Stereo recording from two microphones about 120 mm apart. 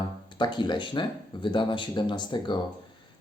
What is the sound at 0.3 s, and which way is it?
Speech, 40° left (ahead or behind).